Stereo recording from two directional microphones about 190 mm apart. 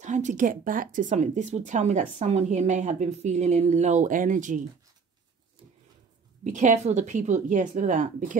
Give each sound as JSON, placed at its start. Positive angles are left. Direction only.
{"t": 0.0, "sound": "speech", "side_deg": -40}
{"t": 6.4, "sound": "speech", "side_deg": -40}